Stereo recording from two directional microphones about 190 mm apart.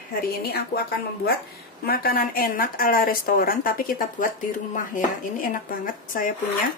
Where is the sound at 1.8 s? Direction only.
50° left (ahead or behind).